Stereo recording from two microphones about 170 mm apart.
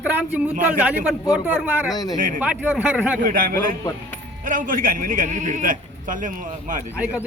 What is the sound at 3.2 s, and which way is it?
A man's voice, 55° right (ahead or behind).